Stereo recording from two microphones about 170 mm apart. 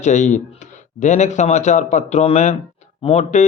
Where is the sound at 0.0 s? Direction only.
45° left (ahead or behind).